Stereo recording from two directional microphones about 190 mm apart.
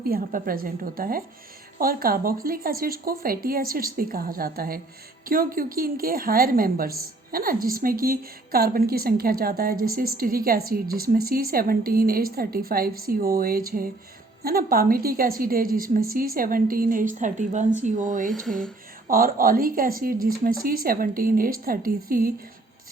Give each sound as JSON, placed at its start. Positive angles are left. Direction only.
{"t": 0.1, "sound": "a woman's voice", "side_deg": -50}
{"t": 18.3, "sound": "speech", "side_deg": 0}
{"t": 19.0, "sound": "a woman's voice", "side_deg": -50}